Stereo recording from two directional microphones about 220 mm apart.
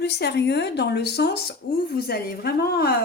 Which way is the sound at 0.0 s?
50° left (ahead or behind).